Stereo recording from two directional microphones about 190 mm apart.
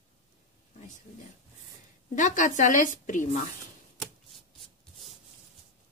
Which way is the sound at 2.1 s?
40° left (ahead or behind).